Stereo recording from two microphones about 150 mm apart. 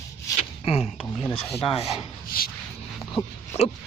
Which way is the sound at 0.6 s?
40° left (ahead or behind).